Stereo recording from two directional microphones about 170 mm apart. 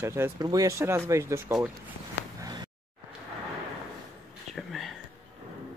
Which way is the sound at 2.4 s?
25° right (ahead or behind).